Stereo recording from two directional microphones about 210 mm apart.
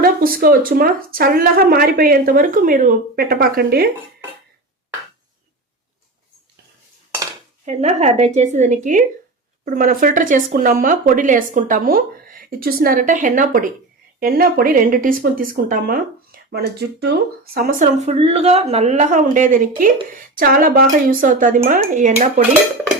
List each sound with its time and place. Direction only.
0.0 s speech: 45° right (ahead or behind)
7.6 s speech: 35° right (ahead or behind)